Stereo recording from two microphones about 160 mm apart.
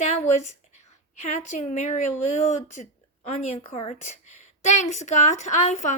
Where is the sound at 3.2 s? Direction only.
45° left (ahead or behind).